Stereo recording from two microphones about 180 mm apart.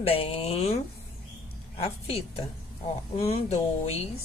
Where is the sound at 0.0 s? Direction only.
30° left (ahead or behind).